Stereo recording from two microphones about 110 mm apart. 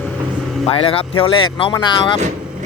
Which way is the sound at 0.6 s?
60° left (ahead or behind).